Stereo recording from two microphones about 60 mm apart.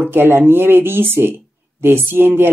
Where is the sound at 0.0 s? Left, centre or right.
Right.